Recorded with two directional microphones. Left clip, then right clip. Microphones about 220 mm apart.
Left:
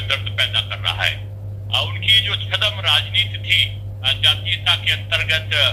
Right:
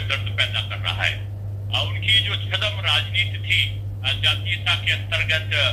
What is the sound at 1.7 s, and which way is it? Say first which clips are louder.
A man's voice: left 4 dB; 15° left (ahead or behind).